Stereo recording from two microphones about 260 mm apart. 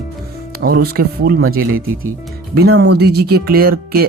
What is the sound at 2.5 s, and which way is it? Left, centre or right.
Speech, right.